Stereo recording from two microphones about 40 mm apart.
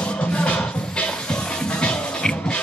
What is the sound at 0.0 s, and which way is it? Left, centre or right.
Music, left.